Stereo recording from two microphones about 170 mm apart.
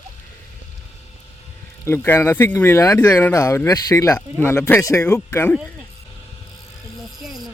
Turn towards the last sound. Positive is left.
turn(degrees=10)  # may be behind; listen again after turning